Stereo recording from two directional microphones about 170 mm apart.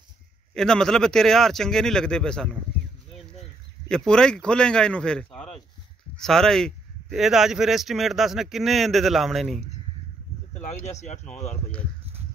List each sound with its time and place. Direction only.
0.6 s speech: 5° left (ahead or behind)
3.9 s speech: 5° left (ahead or behind)
10.6 s speech: 45° left (ahead or behind)